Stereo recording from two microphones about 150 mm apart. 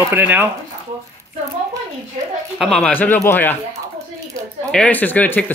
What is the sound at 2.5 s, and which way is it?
Speech, centre (ahead or behind).